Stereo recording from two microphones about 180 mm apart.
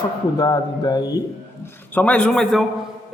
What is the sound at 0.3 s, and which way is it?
Mantra, 20° left (ahead or behind).